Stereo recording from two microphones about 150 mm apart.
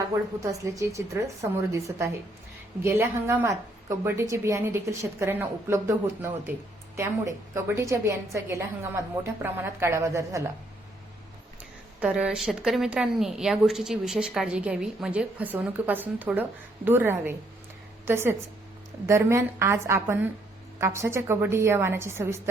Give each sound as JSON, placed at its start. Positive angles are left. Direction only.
{"t": 0.6, "sound": "a woman's voice", "side_deg": -20}
{"t": 11.9, "sound": "a woman's voice", "side_deg": -5}